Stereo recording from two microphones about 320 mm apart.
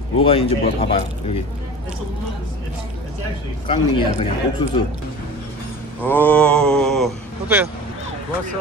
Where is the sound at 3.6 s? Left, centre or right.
Centre.